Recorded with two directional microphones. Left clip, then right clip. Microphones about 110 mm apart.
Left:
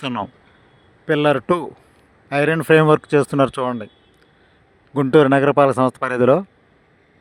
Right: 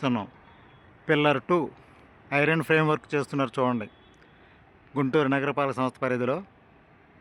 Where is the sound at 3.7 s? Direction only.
35° left (ahead or behind).